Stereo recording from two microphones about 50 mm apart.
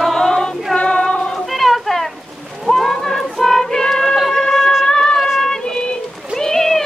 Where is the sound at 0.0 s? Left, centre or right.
Centre.